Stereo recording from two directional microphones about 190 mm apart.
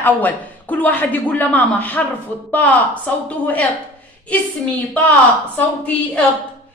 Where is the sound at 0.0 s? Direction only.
10° left (ahead or behind).